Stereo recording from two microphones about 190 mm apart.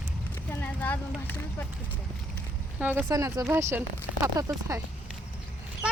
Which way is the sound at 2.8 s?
10° right (ahead or behind).